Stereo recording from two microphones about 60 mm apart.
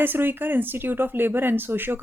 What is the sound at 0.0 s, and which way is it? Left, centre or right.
Speech, right.